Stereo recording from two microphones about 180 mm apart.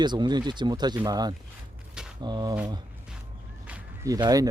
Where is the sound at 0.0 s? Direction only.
25° right (ahead or behind).